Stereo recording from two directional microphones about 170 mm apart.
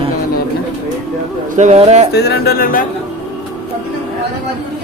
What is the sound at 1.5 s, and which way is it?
Speech, 45° right (ahead or behind).